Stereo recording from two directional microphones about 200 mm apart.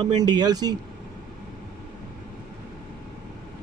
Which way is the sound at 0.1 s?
20° right (ahead or behind).